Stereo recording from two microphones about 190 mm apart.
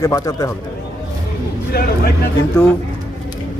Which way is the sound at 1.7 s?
55° left (ahead or behind).